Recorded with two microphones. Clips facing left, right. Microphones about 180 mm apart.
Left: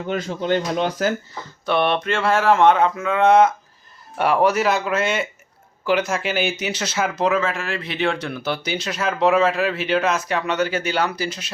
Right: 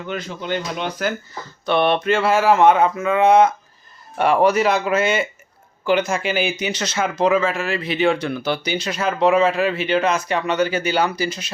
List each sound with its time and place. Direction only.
0.0 s speech: 40° left (ahead or behind)
1.6 s speech: centre (ahead or behind)